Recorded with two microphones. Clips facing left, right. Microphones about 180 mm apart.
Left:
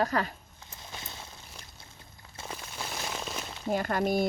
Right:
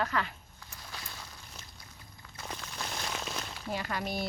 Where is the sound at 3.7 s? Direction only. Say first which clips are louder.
Left 8 dB; 50° left (ahead or behind).